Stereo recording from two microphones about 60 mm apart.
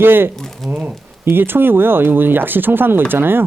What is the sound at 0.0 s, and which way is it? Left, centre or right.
Speech, right.